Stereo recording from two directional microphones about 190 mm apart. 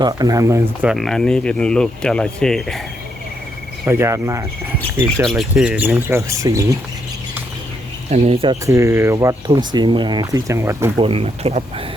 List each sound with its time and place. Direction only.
0.0 s speech: 20° right (ahead or behind)
0.9 s speech: centre (ahead or behind)
3.8 s speech: 15° right (ahead or behind)
5.2 s speech: centre (ahead or behind); by 6.7 s 15° right (ahead or behind)
8.1 s speech: 30° right (ahead or behind)
8.6 s speech: 15° right (ahead or behind)
10.9 s speech: 30° right (ahead or behind)